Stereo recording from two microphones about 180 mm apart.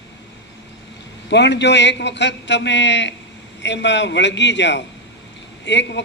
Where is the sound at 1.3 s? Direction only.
75° left (ahead or behind).